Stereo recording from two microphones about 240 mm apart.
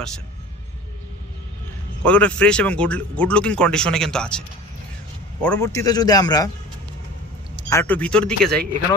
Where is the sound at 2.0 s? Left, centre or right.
Centre.